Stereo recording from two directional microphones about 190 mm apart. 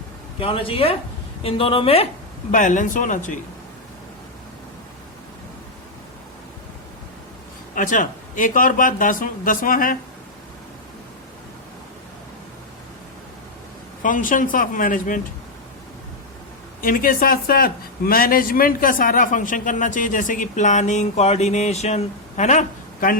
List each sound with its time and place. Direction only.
0.3 s a woman's voice: 30° left (ahead or behind)
2.5 s speech: 40° left (ahead or behind)
7.8 s speech: 45° left (ahead or behind)
14.0 s speech: 45° left (ahead or behind)
16.8 s speech: 45° left (ahead or behind)